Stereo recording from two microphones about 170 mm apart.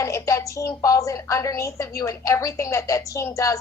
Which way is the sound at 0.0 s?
20° left (ahead or behind).